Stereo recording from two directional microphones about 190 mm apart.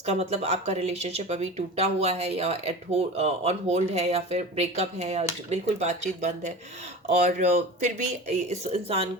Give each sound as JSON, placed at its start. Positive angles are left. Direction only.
{"t": 0.0, "sound": "speech", "side_deg": -35}